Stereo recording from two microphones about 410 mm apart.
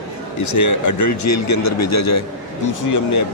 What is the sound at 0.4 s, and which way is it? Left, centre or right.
A man's voice, left.